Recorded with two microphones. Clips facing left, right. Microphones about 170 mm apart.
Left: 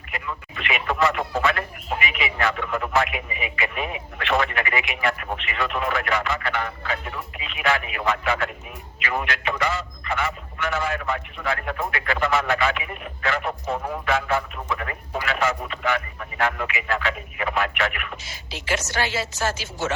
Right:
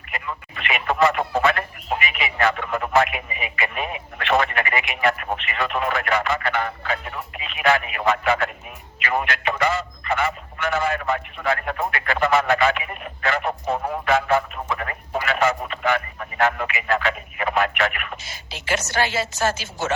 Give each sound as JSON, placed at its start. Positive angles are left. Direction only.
{"t": 0.3, "sound": "radio", "side_deg": -45}
{"t": 2.0, "sound": "speech", "side_deg": -50}